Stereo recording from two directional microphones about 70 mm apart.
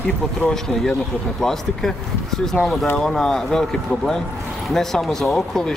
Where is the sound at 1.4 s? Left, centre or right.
Centre.